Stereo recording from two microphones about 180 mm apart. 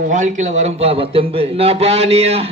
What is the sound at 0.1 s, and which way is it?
A man's voice, 40° right (ahead or behind).